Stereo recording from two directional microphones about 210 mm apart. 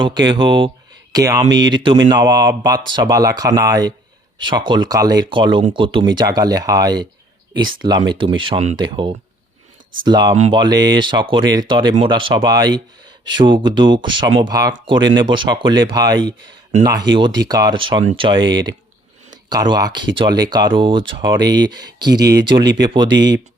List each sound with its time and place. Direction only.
0.0 s speech: 20° right (ahead or behind)
10.3 s speech: 30° right (ahead or behind)
10.6 s speech: 20° right (ahead or behind)
23.0 s speech: 55° right (ahead or behind)